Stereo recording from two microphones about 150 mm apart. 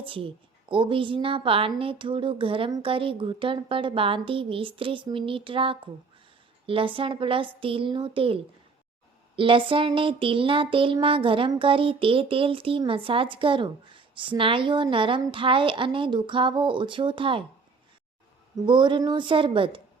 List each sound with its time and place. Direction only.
0.0 s a woman's voice: 35° right (ahead or behind)
18.5 s a woman's voice: 30° right (ahead or behind)